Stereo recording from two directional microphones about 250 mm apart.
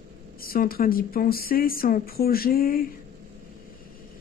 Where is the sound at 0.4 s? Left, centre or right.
Left.